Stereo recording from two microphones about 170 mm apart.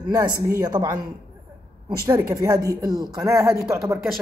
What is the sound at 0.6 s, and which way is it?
Speech, 25° right (ahead or behind).